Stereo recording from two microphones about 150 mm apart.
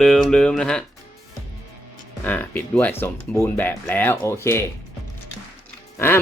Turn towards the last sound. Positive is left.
turn(degrees=15)  # may be behind; listen again after turning